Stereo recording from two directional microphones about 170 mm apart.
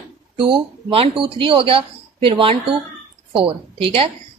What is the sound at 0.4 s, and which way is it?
Speech, 30° right (ahead or behind).